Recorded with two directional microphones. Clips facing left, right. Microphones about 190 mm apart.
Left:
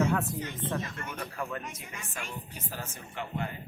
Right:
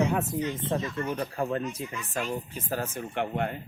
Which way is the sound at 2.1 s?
45° right (ahead or behind).